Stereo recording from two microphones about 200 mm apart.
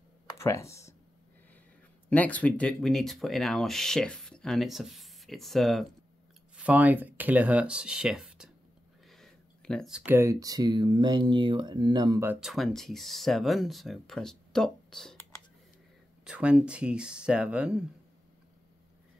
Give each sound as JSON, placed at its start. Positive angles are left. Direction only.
{"t": 0.4, "sound": "speech", "side_deg": 15}
{"t": 2.0, "sound": "speech", "side_deg": 5}
{"t": 12.4, "sound": "speech", "side_deg": 0}
{"t": 16.3, "sound": "speech", "side_deg": -5}